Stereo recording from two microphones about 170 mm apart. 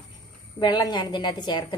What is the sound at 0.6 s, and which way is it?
A woman's voice, 25° left (ahead or behind).